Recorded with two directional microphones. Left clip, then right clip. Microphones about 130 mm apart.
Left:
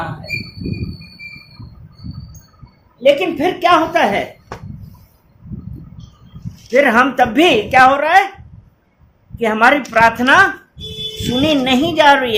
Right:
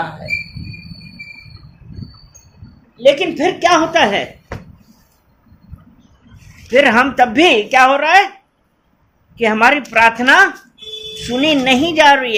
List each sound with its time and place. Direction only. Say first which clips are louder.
3.0 s a woman's voice: right 1 dB; 75° right (ahead or behind); by 4.3 s 50° right (ahead or behind)
6.7 s speech: right 1 dB; 50° right (ahead or behind)
9.3 s speech: even; 45° right (ahead or behind)